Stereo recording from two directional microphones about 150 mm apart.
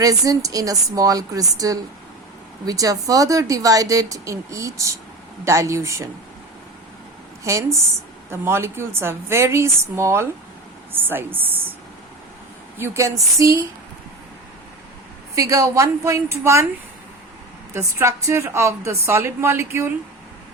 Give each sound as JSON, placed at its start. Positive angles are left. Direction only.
{"t": 0.0, "sound": "speech", "side_deg": -25}
{"t": 7.4, "sound": "a woman's voice", "side_deg": -20}
{"t": 12.7, "sound": "speech", "side_deg": -15}
{"t": 15.4, "sound": "speech", "side_deg": -20}
{"t": 17.9, "sound": "a woman's voice", "side_deg": -20}